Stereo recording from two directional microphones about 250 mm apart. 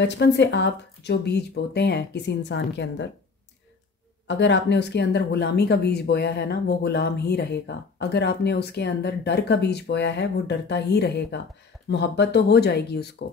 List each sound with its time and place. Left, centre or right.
0.0 s speech: left
4.3 s speech: left